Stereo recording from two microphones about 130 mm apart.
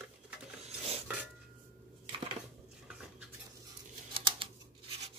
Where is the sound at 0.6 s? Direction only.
55° right (ahead or behind).